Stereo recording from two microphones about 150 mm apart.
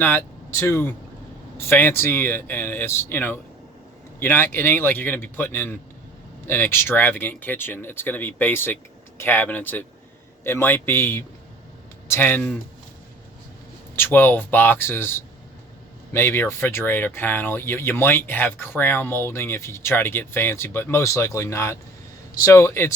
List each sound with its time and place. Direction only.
0.0 s speech: 15° left (ahead or behind)
13.9 s speech: 15° left (ahead or behind)